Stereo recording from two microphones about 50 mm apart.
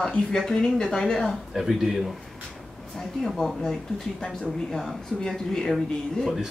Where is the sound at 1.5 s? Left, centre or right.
Centre.